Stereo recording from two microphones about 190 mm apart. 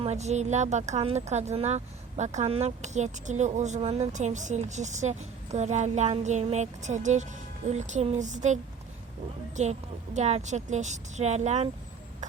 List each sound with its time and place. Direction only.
0.0 s speech: 35° right (ahead or behind)
9.6 s speech: 40° right (ahead or behind)